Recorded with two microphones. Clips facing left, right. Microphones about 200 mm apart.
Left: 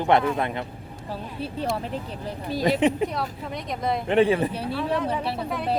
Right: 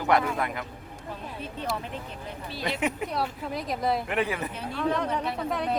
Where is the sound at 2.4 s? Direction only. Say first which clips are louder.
Left 9 dB; 40° left (ahead or behind).